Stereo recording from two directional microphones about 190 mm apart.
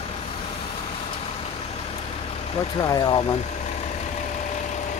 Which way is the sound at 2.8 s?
20° left (ahead or behind).